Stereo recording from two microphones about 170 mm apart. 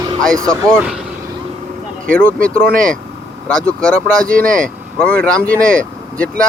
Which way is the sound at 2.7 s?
55° right (ahead or behind).